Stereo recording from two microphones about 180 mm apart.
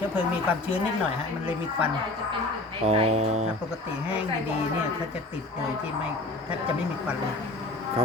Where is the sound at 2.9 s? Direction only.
35° right (ahead or behind).